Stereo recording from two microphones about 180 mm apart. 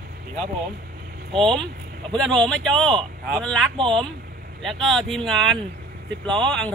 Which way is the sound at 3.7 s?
30° right (ahead or behind).